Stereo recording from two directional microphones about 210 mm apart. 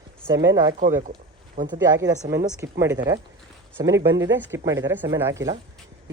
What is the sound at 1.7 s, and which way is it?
A woman's voice, 15° right (ahead or behind).